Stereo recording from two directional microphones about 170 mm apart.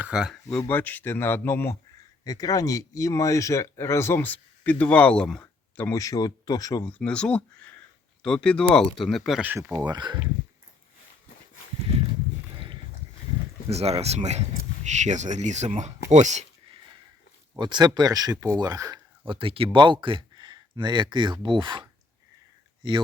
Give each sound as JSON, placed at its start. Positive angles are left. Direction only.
{"t": 0.0, "sound": "speech", "side_deg": -5}
{"t": 0.7, "sound": "speech", "side_deg": 10}
{"t": 7.0, "sound": "speech", "side_deg": 5}
{"t": 12.5, "sound": "a sound", "side_deg": -30}
{"t": 13.7, "sound": "speech", "side_deg": -40}
{"t": 17.6, "sound": "speech", "side_deg": -25}